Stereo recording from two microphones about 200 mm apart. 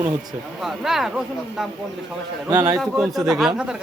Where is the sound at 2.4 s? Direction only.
20° right (ahead or behind).